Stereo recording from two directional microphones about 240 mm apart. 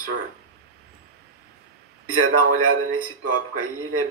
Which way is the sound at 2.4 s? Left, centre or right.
Right.